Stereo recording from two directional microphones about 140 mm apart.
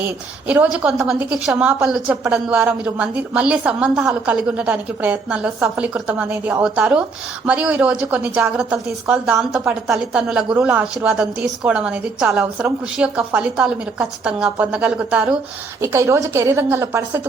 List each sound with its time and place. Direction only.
0.0 s a woman's voice: 10° right (ahead or behind)
15.8 s a woman's voice: 20° right (ahead or behind)